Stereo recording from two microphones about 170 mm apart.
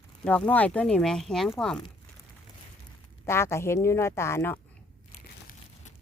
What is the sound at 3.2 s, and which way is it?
Speech, 15° left (ahead or behind).